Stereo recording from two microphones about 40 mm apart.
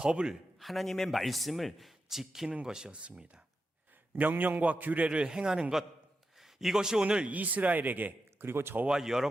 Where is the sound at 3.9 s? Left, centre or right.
Right.